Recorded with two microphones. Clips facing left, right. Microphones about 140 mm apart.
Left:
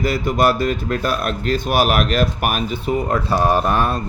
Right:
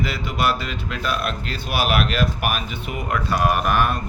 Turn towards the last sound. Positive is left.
turn(degrees=30)  # may be behind; listen again after turning